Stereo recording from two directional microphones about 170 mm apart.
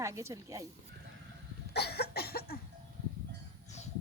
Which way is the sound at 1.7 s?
70° left (ahead or behind).